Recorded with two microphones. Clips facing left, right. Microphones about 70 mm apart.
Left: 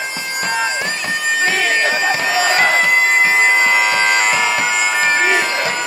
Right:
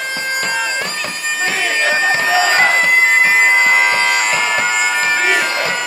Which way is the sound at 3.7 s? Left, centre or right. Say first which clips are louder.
Right 1 dB; centre.